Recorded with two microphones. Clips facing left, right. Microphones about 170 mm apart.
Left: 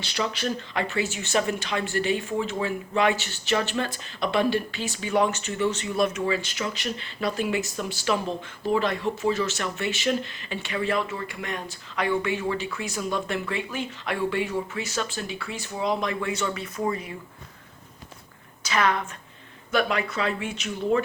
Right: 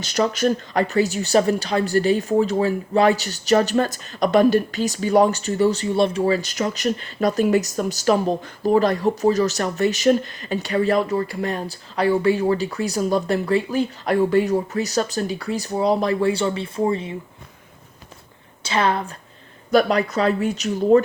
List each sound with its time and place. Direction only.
0.0 s speech: 45° right (ahead or behind); by 17.2 s 25° right (ahead or behind)
18.6 s speech: 30° right (ahead or behind)